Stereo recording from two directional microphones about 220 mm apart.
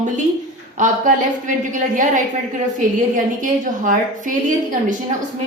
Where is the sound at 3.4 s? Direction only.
35° right (ahead or behind).